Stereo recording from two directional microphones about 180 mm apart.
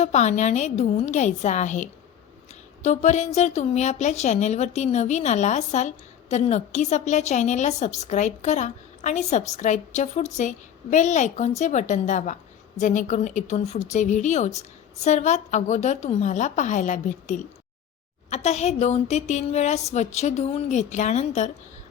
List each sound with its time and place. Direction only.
0.0 s a woman's voice: 40° left (ahead or behind)
2.5 s a sound: 40° left (ahead or behind)
3.3 s a woman's voice: 40° left (ahead or behind)